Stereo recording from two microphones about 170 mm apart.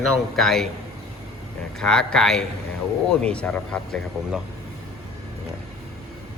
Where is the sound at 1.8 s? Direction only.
5° left (ahead or behind).